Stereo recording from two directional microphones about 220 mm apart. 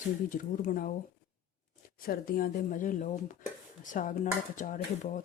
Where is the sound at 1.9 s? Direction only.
40° left (ahead or behind).